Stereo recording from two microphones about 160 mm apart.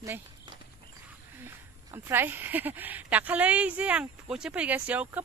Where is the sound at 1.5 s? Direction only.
15° right (ahead or behind).